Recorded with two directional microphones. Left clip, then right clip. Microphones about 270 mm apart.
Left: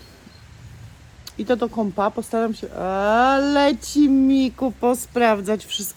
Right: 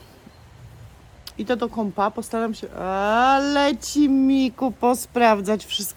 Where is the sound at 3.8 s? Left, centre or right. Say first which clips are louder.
Left 2 dB; right.